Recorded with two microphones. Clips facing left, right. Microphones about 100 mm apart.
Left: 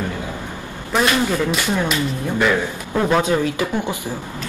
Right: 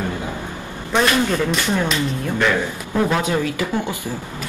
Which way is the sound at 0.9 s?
5° left (ahead or behind).